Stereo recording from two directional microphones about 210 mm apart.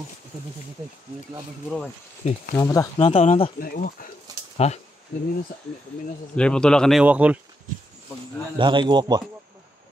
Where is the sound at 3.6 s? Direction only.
40° left (ahead or behind).